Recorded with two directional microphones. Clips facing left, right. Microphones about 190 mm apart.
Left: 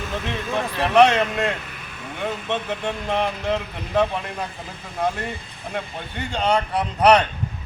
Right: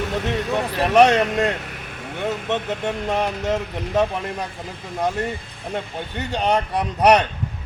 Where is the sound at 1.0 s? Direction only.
40° right (ahead or behind).